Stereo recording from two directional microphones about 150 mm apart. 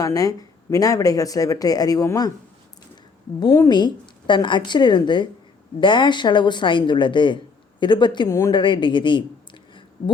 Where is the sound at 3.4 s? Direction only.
25° left (ahead or behind).